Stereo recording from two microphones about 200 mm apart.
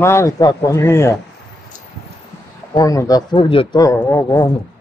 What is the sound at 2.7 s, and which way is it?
A man's voice, 15° left (ahead or behind).